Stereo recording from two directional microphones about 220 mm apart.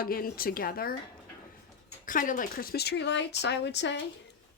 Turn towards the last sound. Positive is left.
turn(degrees=50)  # may be behind; listen again after turning